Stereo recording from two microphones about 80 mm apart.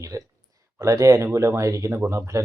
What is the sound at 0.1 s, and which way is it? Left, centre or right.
Speech, right.